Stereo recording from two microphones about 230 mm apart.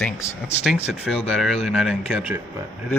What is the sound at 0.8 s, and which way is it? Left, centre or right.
Speech, left.